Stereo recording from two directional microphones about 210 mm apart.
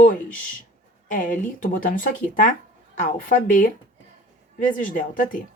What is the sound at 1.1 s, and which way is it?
Speech, 40° left (ahead or behind).